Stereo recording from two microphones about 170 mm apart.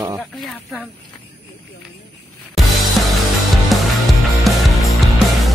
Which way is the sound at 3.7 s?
Centre (ahead or behind).